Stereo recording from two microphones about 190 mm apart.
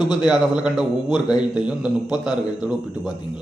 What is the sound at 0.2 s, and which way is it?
A man's voice, 5° right (ahead or behind).